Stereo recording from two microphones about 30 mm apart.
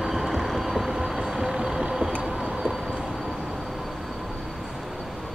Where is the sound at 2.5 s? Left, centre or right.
Centre.